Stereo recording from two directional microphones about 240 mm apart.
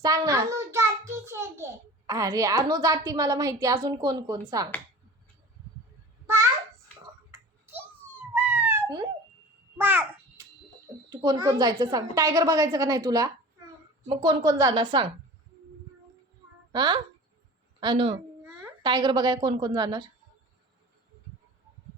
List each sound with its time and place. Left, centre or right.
0.0 s a child's voice: centre
6.2 s a sound: centre
7.3 s cat: centre
9.7 s a sound: centre
11.1 s a woman's voice: centre
16.7 s a child's voice: centre